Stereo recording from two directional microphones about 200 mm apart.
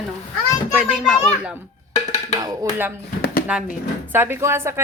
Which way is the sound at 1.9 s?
30° left (ahead or behind).